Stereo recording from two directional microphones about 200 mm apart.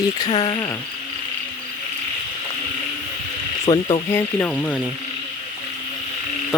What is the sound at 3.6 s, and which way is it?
Speech, 25° left (ahead or behind).